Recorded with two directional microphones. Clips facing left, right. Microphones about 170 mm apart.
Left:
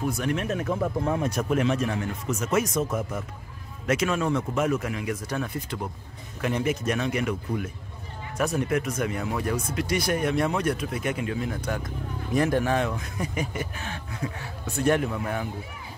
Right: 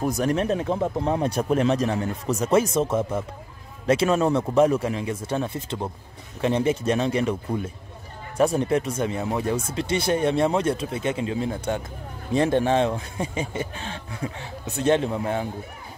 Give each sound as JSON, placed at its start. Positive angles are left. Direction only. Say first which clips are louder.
{"t": 0.0, "sound": "speech", "louder": "right 4 dB", "side_deg": -40}